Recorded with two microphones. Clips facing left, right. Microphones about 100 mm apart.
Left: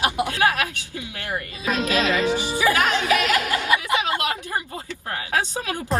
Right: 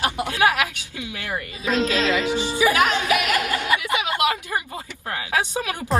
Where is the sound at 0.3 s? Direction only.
20° right (ahead or behind).